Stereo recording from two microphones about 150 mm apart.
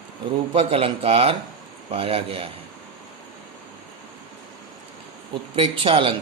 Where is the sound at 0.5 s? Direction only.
40° right (ahead or behind).